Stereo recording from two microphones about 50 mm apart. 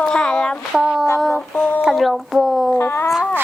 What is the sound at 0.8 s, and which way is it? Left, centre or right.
Speech, centre.